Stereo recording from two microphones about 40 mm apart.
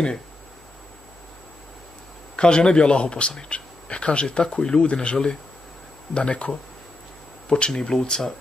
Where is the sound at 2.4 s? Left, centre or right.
Left.